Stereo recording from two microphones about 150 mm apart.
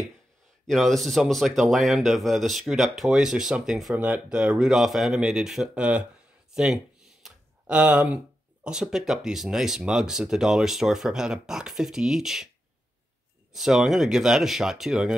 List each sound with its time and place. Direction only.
0.7 s speech: centre (ahead or behind)
7.2 s a sound: 5° right (ahead or behind)
8.6 s speech: 5° right (ahead or behind)
13.5 s speech: 5° right (ahead or behind)